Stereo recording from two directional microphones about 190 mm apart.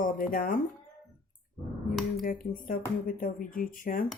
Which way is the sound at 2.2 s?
50° left (ahead or behind).